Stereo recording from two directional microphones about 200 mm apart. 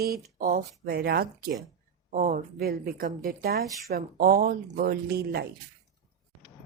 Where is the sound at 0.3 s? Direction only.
45° right (ahead or behind).